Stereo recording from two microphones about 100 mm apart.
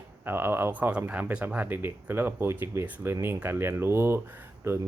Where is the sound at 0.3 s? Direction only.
25° right (ahead or behind).